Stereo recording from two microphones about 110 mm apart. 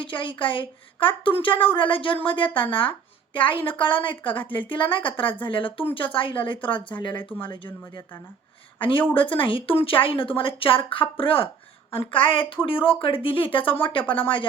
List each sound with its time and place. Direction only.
0.0 s a woman's voice: 45° left (ahead or behind)
3.7 s a woman's voice: 50° left (ahead or behind)